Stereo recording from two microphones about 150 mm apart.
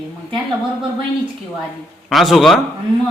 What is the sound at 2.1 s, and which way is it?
Speech, centre (ahead or behind).